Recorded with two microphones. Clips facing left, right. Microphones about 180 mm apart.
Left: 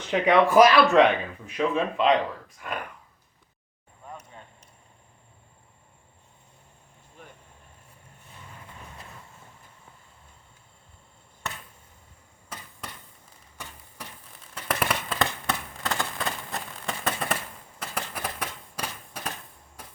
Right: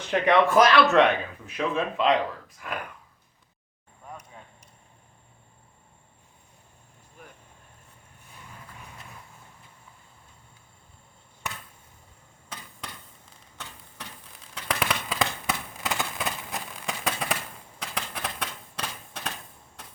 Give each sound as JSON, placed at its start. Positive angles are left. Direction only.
{"t": 0.1, "sound": "speech", "side_deg": 0}
{"t": 12.5, "sound": "a sound", "side_deg": 5}
{"t": 19.8, "sound": "vehicle", "side_deg": 10}